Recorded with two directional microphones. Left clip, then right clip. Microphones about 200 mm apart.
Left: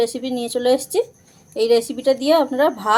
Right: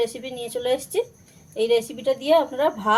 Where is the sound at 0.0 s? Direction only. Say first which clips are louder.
Left 5 dB; 45° left (ahead or behind).